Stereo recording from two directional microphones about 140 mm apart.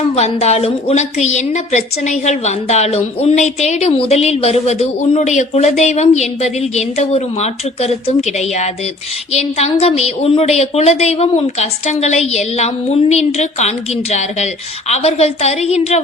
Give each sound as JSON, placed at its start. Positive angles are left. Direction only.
{"t": 0.2, "sound": "a woman's voice", "side_deg": 50}